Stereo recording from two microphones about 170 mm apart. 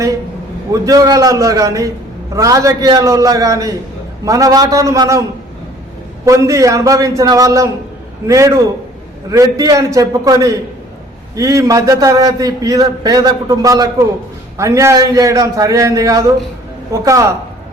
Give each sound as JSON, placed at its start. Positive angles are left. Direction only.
{"t": 0.7, "sound": "a man's voice", "side_deg": -20}
{"t": 6.2, "sound": "a man's voice", "side_deg": -20}